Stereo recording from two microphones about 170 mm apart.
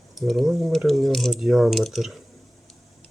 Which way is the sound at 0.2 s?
Centre (ahead or behind).